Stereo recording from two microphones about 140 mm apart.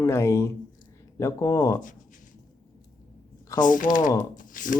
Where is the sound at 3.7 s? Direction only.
70° left (ahead or behind).